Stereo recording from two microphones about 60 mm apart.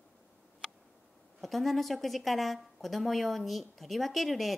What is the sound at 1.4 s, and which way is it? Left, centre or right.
A woman's voice, centre.